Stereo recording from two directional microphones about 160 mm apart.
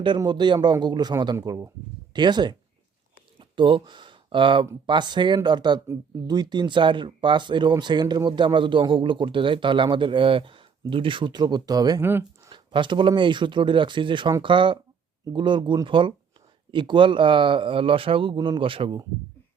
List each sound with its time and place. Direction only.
0.2 s speech: 25° right (ahead or behind)
12.5 s speech: 30° right (ahead or behind)